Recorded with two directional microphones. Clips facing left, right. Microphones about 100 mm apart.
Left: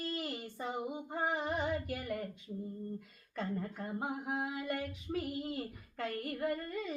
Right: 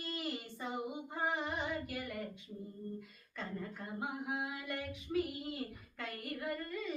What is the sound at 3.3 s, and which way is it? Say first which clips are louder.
Humming: left 5 dB; 40° left (ahead or behind).